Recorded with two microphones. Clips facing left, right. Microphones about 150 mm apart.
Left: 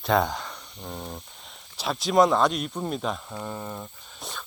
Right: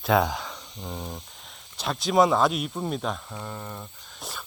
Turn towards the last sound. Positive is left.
turn(degrees=-5)  # may be behind; listen again after turning